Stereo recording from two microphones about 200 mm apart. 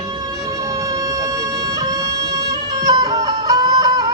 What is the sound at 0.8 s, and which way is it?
Music, 20° right (ahead or behind).